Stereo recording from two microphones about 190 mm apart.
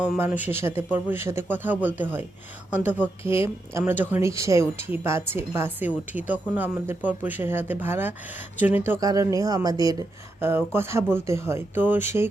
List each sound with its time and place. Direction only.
0.0 s a woman's voice: 5° right (ahead or behind)